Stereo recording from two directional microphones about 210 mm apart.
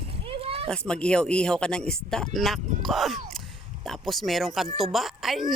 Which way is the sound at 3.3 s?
Centre (ahead or behind).